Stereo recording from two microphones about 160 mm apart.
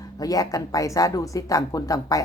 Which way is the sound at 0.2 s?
20° left (ahead or behind).